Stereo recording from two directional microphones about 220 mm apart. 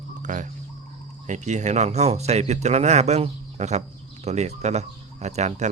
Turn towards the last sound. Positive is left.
turn(degrees=-30)  # may be behind; listen again after turning